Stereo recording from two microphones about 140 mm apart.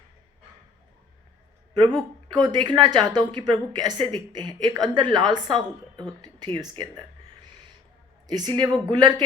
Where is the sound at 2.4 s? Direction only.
35° right (ahead or behind).